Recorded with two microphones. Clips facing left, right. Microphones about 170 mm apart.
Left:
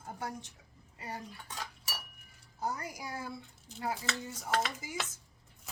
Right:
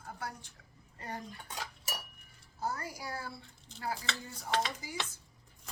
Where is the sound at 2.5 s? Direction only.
15° left (ahead or behind).